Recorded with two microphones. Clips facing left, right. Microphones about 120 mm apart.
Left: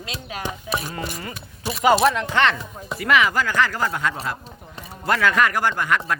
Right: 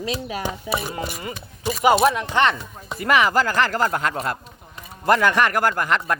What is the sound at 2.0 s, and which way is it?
Speech, 15° right (ahead or behind).